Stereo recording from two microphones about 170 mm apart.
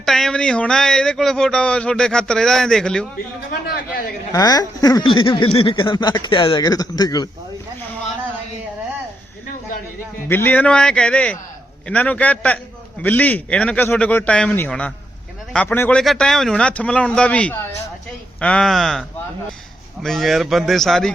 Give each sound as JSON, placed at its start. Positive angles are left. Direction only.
{"t": 0.0, "sound": "speech", "side_deg": 0}
{"t": 4.3, "sound": "speech", "side_deg": 20}
{"t": 10.2, "sound": "a man's voice", "side_deg": 10}